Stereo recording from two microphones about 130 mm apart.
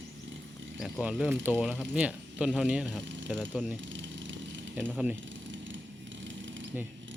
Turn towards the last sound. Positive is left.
turn(degrees=-15)  # may be behind; listen again after turning